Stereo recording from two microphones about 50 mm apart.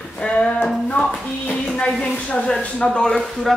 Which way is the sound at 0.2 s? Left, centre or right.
Centre.